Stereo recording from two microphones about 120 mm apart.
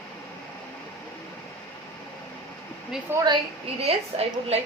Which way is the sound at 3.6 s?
60° right (ahead or behind).